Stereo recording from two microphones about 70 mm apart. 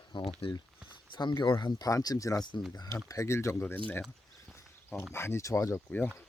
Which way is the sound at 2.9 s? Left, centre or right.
Left.